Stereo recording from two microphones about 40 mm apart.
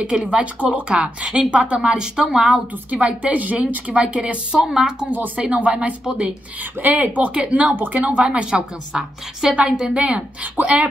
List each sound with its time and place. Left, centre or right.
0.0 s speech: right
1.8 s a woman's voice: right
2.9 s speech: right
4.6 s a woman's voice: centre
5.1 s speech: right
5.4 s a woman's voice: right
6.8 s speech: right
8.2 s a woman's voice: right
9.9 s a woman's voice: right